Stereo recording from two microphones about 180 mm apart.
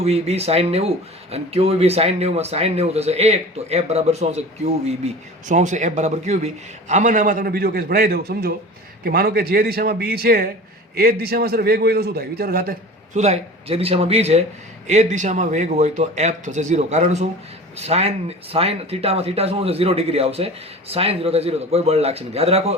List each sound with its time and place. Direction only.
0.0 s a man's voice: 35° right (ahead or behind); by 12.7 s 55° right (ahead or behind)
13.1 s speech: 35° right (ahead or behind)